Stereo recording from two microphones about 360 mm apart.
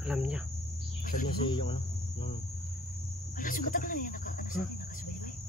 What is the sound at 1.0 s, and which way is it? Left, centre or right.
Speech, left.